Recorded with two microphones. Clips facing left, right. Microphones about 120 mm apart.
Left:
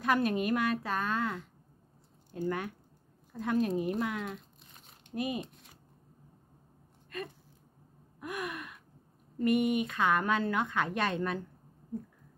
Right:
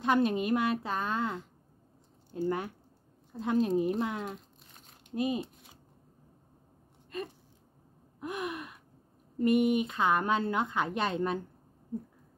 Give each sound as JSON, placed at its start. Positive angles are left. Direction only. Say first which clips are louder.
{"t": 0.0, "sound": "speech", "louder": "right 2 dB", "side_deg": -25}
{"t": 2.4, "sound": "speech", "louder": "right 2 dB", "side_deg": -30}
{"t": 8.2, "sound": "speech", "louder": "right 2 dB", "side_deg": -25}